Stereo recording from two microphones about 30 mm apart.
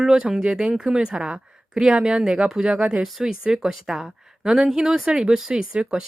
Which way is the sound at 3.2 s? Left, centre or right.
Centre.